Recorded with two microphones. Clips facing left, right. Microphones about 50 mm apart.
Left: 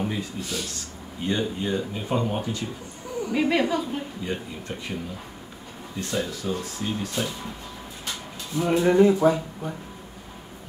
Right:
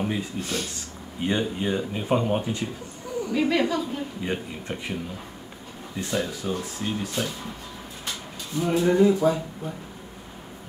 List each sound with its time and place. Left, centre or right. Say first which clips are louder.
0.0 s speech: right 1 dB; centre
0.4 s speech: right 2 dB; right
1.2 s speech: right 1 dB; centre
3.3 s a woman's voice: even; centre
4.2 s speech: right 1 dB; right
5.9 s speech: right 1 dB; centre
8.5 s speech: left 2 dB; left
9.2 s speech: left 2 dB; left